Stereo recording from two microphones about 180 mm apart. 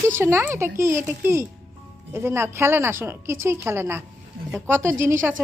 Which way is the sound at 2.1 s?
15° right (ahead or behind).